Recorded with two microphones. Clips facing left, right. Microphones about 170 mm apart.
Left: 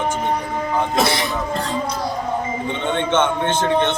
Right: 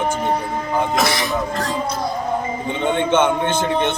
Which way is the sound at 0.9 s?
30° left (ahead or behind).